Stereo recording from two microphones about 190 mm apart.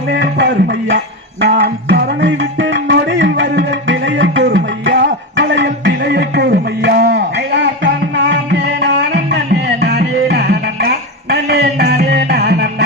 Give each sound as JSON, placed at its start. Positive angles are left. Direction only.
{"t": 0.1, "sound": "music", "side_deg": -60}
{"t": 4.4, "sound": "music", "side_deg": -60}